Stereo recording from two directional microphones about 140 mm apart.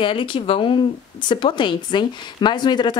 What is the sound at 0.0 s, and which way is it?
A woman's voice, 35° left (ahead or behind).